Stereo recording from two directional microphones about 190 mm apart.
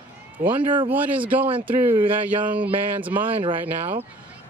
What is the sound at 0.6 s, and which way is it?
Speech, 25° right (ahead or behind).